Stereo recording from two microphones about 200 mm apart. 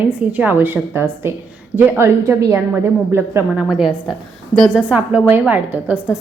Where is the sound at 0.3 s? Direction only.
10° right (ahead or behind).